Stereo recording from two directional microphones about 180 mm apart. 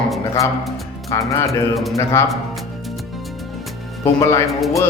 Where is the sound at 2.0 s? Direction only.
15° left (ahead or behind).